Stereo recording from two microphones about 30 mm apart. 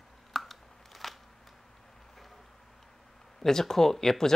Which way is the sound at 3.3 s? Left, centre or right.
Centre.